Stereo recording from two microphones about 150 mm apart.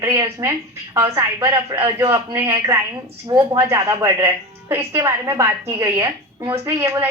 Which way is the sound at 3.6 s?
20° right (ahead or behind).